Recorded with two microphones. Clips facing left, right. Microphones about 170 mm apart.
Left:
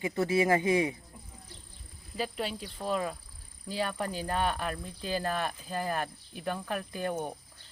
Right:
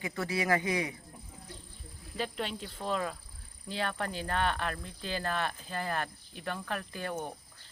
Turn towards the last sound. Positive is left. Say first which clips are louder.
# left 4 dB
turn(degrees=15)  # may be behind; listen again after turning